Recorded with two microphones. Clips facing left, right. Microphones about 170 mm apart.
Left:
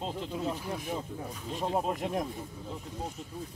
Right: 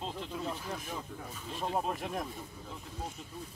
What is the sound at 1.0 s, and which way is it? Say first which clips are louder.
Speech: left 5 dB; 25° left (ahead or behind).